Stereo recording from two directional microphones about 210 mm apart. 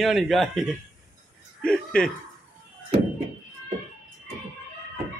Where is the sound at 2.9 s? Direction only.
25° right (ahead or behind).